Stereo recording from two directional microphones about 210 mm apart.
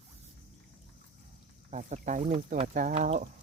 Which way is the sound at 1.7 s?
35° right (ahead or behind).